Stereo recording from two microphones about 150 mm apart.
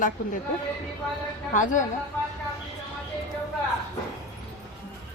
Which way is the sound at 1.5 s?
60° left (ahead or behind).